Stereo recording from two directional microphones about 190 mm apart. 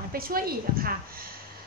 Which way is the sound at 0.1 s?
50° right (ahead or behind).